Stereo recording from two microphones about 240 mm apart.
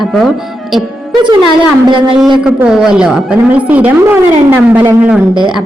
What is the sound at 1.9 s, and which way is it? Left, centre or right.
Speech, centre.